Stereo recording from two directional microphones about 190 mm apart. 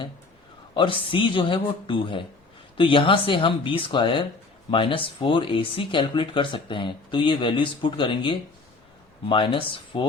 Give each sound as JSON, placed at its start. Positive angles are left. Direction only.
{"t": 0.7, "sound": "speech", "side_deg": 25}